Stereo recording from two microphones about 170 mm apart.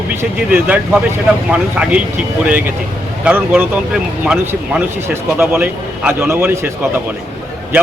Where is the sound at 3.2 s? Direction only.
10° right (ahead or behind).